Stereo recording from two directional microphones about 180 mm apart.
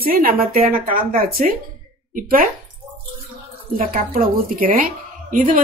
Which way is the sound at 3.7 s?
50° right (ahead or behind).